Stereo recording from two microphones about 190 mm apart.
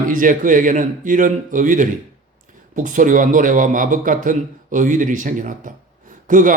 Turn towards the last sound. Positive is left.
turn(degrees=-45)  # may be behind; listen again after turning